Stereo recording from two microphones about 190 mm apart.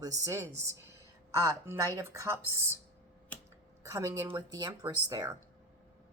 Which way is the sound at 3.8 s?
15° right (ahead or behind).